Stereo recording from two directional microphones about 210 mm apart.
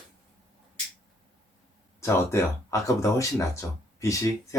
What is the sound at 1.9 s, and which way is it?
Speech, 15° left (ahead or behind).